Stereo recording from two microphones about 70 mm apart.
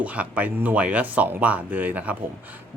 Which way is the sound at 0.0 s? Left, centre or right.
Right.